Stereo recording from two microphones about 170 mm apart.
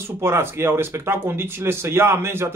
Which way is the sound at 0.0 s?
15° right (ahead or behind).